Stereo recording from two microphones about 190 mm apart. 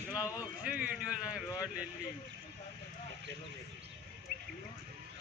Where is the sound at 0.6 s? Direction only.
5° right (ahead or behind).